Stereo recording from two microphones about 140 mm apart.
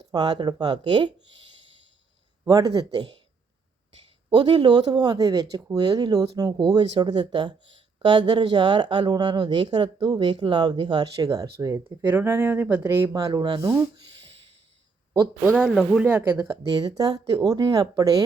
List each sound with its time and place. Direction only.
0.1 s speech: 30° right (ahead or behind)
2.4 s speech: 25° right (ahead or behind)
4.4 s speech: 35° right (ahead or behind); by 13.2 s 15° right (ahead or behind)
13.3 s speech: 30° right (ahead or behind)
15.5 s speech: centre (ahead or behind)
16.8 s speech: 25° right (ahead or behind)